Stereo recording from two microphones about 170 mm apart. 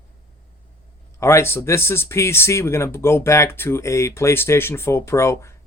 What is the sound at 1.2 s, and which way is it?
Speech, 15° left (ahead or behind).